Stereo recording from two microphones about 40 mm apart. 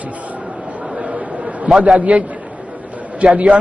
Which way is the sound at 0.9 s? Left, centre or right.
Right.